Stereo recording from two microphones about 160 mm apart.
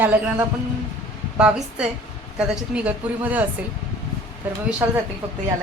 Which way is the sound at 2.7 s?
10° right (ahead or behind).